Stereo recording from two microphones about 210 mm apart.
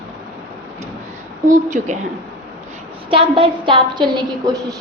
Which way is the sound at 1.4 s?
35° right (ahead or behind).